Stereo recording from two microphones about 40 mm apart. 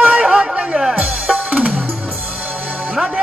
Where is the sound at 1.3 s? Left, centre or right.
Right.